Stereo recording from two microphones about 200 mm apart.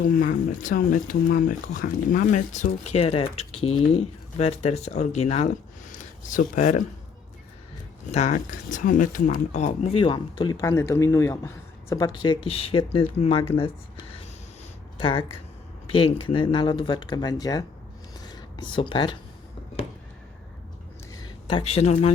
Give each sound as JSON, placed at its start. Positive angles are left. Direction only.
{"t": 0.1, "sound": "speech", "side_deg": 45}
{"t": 8.1, "sound": "speech", "side_deg": 35}
{"t": 21.4, "sound": "speech", "side_deg": 30}